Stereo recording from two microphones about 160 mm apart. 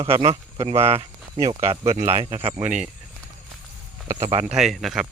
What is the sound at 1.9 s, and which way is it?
Speech, 40° right (ahead or behind).